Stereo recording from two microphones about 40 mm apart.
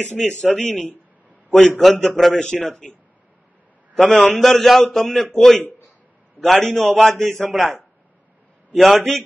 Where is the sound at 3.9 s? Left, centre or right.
Centre.